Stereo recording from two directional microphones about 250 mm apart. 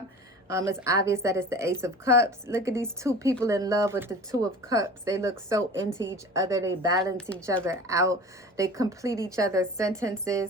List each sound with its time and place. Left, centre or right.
0.4 s speech: centre
7.0 s a woman's voice: centre
7.6 s speech: centre